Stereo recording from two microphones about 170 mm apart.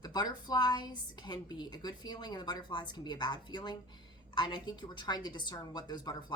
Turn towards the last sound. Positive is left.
turn(degrees=25)  # may be behind; listen again after turning